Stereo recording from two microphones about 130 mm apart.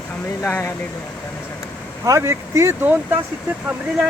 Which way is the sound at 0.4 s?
15° left (ahead or behind).